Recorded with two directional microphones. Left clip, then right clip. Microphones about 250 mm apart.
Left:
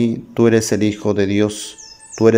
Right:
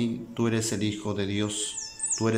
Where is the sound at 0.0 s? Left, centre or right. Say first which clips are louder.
Left 14 dB; left.